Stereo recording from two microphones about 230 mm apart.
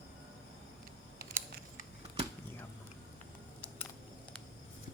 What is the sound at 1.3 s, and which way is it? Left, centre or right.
Scissors, right.